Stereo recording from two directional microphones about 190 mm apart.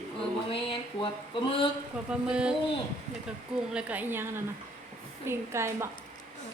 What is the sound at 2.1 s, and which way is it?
Speech, 5° right (ahead or behind).